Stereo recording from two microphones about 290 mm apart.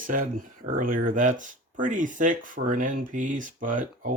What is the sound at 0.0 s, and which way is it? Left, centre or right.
Speech, right.